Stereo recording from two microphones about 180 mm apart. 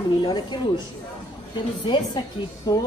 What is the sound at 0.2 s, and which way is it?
Speech, 25° left (ahead or behind).